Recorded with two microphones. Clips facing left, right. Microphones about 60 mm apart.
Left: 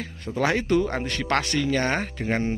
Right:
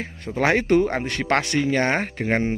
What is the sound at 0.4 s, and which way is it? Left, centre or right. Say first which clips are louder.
Speech: right 4 dB; right.